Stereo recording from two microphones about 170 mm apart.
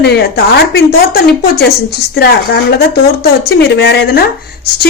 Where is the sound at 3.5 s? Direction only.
80° left.